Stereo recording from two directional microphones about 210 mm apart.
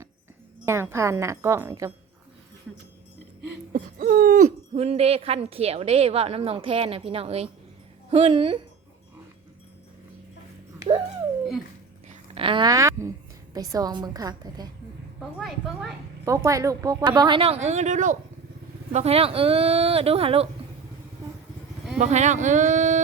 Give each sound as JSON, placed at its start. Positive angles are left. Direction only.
{"t": 0.6, "sound": "speech", "side_deg": -10}
{"t": 3.7, "sound": "hoot", "side_deg": -40}
{"t": 4.7, "sound": "a woman's voice", "side_deg": -30}
{"t": 12.0, "sound": "a sound", "side_deg": -25}
{"t": 13.5, "sound": "speech", "side_deg": -15}
{"t": 15.2, "sound": "a woman's voice", "side_deg": 0}
{"t": 16.2, "sound": "a woman's voice", "side_deg": -15}
{"t": 21.9, "sound": "speech", "side_deg": -35}